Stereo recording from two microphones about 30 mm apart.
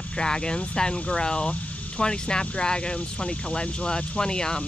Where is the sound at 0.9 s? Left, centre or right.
Left.